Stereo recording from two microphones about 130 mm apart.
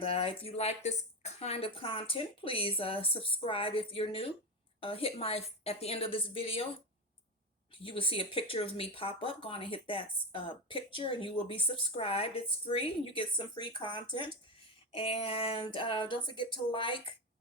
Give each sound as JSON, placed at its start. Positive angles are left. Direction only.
{"t": 0.0, "sound": "speech", "side_deg": 45}
{"t": 7.7, "sound": "speech", "side_deg": 45}